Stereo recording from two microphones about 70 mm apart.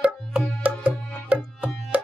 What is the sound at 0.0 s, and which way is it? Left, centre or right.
Tabla, centre.